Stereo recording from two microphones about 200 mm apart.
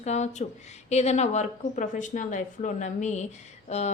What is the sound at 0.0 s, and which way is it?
A woman's voice, 35° left (ahead or behind).